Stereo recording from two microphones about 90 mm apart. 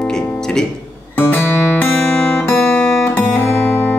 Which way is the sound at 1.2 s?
20° left (ahead or behind).